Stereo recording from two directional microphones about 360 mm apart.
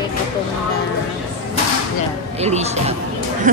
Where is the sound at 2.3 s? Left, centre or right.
Centre.